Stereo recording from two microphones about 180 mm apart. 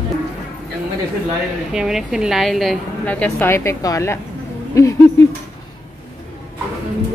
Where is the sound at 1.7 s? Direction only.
Centre (ahead or behind); by 4.2 s 15° left (ahead or behind).